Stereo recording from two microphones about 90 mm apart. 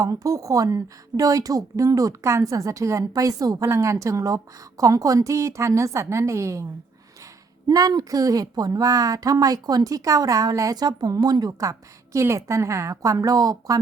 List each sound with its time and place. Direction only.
0.0 s a woman's voice: 40° right (ahead or behind)
7.7 s a woman's voice: 45° right (ahead or behind)